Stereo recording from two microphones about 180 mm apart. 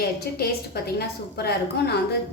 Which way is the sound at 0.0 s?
60° left (ahead or behind).